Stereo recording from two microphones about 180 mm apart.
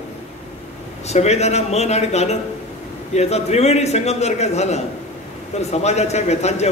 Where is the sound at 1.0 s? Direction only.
40° left (ahead or behind).